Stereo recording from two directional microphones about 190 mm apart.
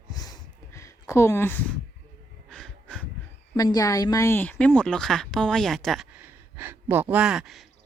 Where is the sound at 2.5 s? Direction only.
Centre (ahead or behind).